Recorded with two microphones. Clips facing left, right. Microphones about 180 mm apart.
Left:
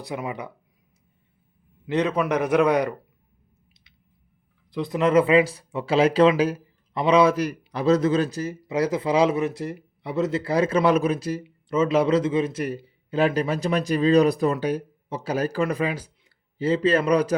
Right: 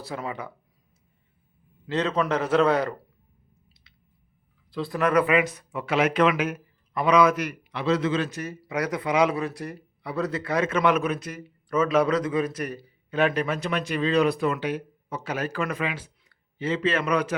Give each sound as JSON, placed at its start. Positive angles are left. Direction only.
{"t": 0.0, "sound": "a man's voice", "side_deg": 15}
{"t": 1.9, "sound": "a man's voice", "side_deg": 15}
{"t": 4.7, "sound": "a man's voice", "side_deg": 20}